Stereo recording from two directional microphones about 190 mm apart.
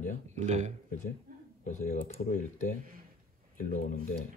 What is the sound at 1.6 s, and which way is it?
Speech, 40° left (ahead or behind).